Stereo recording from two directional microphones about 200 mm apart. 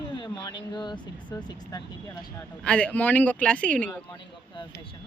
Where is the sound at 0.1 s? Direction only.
20° left (ahead or behind).